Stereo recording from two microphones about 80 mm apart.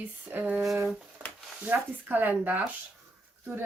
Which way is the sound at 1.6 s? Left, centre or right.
Right.